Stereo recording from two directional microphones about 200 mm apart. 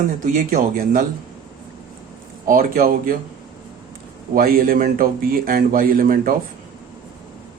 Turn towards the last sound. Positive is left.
turn(degrees=-45)  # may be behind; listen again after turning